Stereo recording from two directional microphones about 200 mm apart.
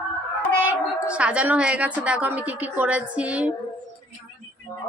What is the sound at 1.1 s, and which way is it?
Speech, 5° right (ahead or behind).